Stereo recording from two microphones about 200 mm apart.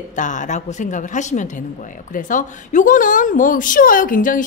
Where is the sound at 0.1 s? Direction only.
40° left (ahead or behind).